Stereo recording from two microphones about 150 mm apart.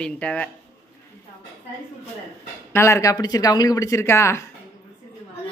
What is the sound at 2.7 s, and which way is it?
Speech, 20° left (ahead or behind).